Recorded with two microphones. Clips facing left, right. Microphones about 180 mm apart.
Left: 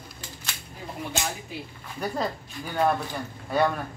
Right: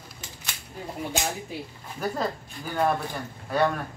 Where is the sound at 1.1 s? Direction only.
15° right (ahead or behind).